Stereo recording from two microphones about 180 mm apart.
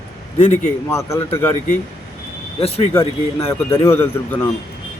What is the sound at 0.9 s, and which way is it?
Speech, 15° left (ahead or behind).